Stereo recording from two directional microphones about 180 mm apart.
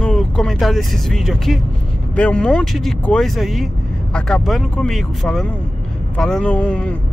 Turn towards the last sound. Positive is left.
turn(degrees=5)  # may be behind; listen again after turning